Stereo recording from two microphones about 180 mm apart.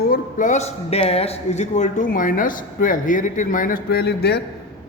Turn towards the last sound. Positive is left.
turn(degrees=65)  # may be behind; listen again after turning